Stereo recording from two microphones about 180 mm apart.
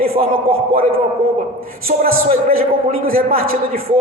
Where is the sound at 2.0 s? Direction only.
50° right (ahead or behind).